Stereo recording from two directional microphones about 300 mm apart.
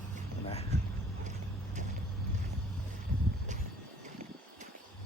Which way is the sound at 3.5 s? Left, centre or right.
Right.